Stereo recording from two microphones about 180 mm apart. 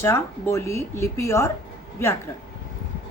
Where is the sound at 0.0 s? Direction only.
15° left (ahead or behind).